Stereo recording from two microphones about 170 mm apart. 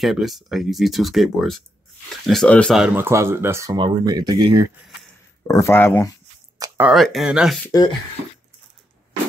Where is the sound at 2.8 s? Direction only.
10° right (ahead or behind).